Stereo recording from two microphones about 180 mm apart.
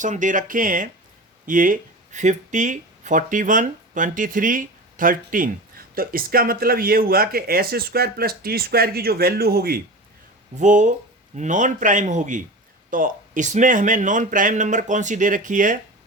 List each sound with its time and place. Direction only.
0.0 s speech: 45° right (ahead or behind)
10.5 s speech: 40° right (ahead or behind)